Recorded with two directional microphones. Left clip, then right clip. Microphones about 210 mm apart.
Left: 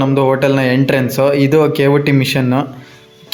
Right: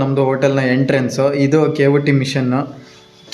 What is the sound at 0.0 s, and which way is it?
Speech, 15° left (ahead or behind).